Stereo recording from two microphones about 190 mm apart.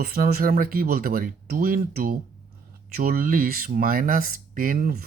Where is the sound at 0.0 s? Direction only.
50° right (ahead or behind).